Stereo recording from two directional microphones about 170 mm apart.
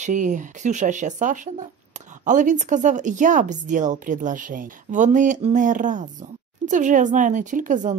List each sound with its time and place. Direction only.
0.0 s speech: 45° right (ahead or behind)